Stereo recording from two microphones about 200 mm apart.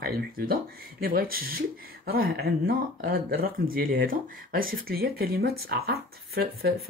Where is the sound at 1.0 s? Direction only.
45° right (ahead or behind).